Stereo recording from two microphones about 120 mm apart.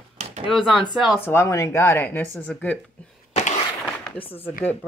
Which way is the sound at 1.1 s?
20° left (ahead or behind).